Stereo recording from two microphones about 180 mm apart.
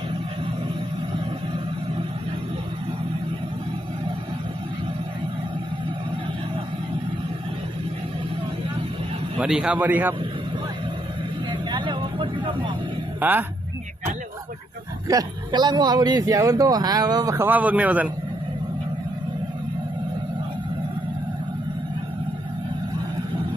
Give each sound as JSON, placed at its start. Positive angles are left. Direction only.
{"t": 9.4, "sound": "a man's voice", "side_deg": -5}
{"t": 11.7, "sound": "vehicle", "side_deg": -25}
{"t": 13.1, "sound": "speech", "side_deg": -10}
{"t": 15.0, "sound": "a man's voice", "side_deg": -20}